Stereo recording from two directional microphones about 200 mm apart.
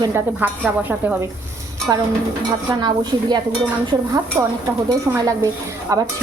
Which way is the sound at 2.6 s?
20° right (ahead or behind).